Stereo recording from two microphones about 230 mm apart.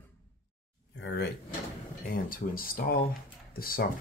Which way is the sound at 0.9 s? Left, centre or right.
Left.